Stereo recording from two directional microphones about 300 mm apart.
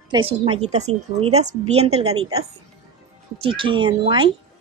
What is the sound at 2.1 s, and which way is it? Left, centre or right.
Speech, right.